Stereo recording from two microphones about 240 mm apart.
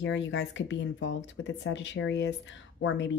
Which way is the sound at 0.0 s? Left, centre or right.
Left.